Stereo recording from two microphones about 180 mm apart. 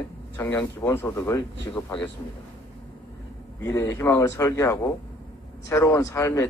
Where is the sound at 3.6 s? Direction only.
15° left (ahead or behind).